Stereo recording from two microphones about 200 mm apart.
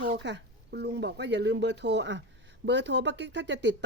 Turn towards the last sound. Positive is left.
turn(degrees=-60)  # may be behind; listen again after turning